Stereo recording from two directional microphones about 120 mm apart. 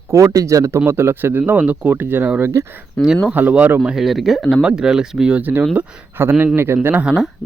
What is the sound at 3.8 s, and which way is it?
Speech, centre (ahead or behind).